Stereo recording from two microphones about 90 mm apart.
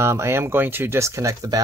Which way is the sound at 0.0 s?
30° right (ahead or behind).